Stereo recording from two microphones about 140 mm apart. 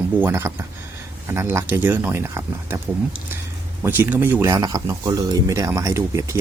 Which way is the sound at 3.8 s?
15° right (ahead or behind).